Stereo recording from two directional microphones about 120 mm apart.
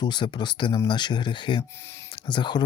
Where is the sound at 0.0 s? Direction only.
40° left (ahead or behind).